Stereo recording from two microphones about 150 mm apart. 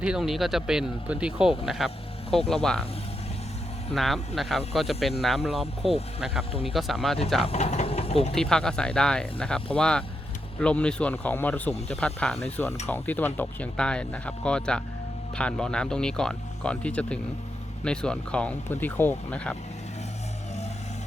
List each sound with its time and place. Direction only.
0.0 s speech: 5° right (ahead or behind)
3.9 s speech: centre (ahead or behind)
6.5 s speech: 40° left (ahead or behind)
6.7 s speech: centre (ahead or behind)
7.4 s speech: 45° left (ahead or behind)
8.4 s speech: 5° left (ahead or behind)